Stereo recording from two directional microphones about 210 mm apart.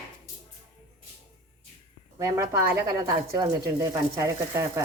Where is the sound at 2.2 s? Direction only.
15° right (ahead or behind).